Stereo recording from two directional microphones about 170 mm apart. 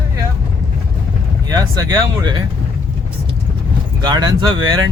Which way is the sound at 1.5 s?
20° right (ahead or behind).